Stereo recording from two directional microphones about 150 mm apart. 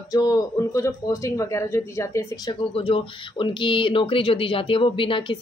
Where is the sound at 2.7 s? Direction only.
35° left (ahead or behind).